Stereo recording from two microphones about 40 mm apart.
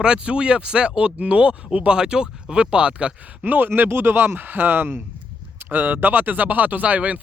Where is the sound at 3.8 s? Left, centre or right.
Right.